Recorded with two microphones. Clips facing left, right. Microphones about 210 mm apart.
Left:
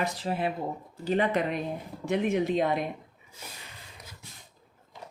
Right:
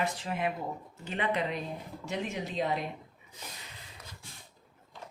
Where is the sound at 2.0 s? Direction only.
55° left (ahead or behind).